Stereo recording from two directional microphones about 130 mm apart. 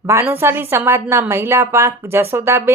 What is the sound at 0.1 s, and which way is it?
A woman's voice, 20° right (ahead or behind).